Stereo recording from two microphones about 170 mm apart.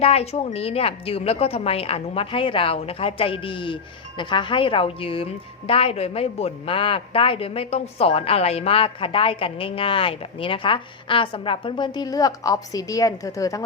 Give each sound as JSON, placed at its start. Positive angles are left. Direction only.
{"t": 0.0, "sound": "a woman's voice", "side_deg": 35}